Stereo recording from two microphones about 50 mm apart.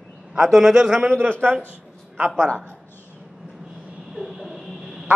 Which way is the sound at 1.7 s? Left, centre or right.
Right.